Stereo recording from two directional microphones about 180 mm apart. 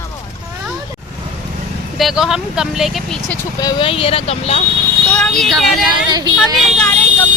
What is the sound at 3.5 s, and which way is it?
Speech, 25° left (ahead or behind).